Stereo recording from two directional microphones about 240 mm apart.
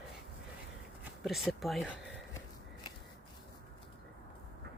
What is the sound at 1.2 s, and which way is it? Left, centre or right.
Speech, centre.